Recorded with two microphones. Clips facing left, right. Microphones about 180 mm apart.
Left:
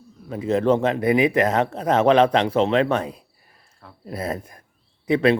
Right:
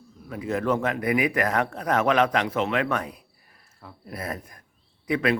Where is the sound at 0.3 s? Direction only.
25° left (ahead or behind).